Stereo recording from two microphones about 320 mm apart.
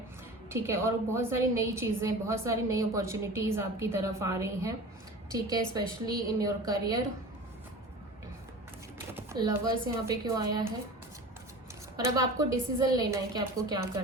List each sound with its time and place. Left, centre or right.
0.5 s a woman's voice: centre
9.0 s a sound: centre
10.3 s a woman's voice: centre
11.9 s a woman's voice: centre